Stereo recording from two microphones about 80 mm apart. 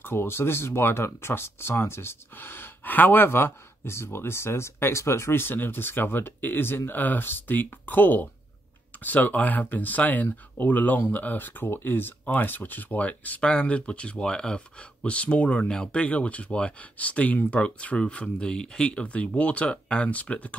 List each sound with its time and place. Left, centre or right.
0.0 s speech: left